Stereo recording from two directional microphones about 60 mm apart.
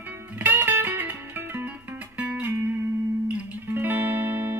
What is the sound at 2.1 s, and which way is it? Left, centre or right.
Music, right.